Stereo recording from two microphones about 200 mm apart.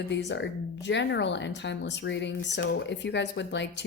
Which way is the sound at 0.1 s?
60° left (ahead or behind).